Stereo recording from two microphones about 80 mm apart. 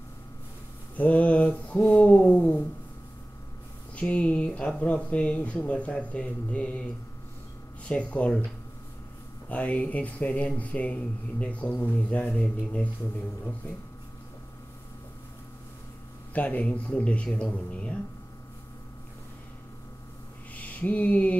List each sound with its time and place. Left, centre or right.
0.9 s speech: centre
3.9 s speech: centre
7.9 s speech: centre
9.5 s speech: centre
16.3 s speech: centre
20.5 s a sound: centre